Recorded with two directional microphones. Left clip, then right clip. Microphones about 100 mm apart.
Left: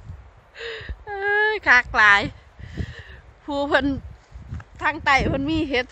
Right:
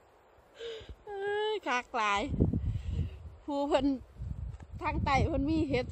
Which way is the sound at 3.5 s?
20° right (ahead or behind).